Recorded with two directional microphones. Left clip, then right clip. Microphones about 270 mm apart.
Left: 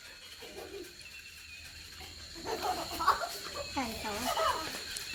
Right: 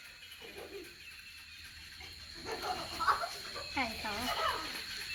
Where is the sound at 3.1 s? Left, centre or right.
Left.